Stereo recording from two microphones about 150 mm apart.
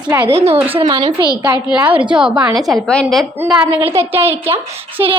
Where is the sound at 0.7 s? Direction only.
30° right (ahead or behind).